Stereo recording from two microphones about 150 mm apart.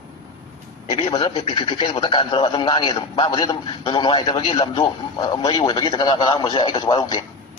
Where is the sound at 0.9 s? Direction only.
30° left (ahead or behind).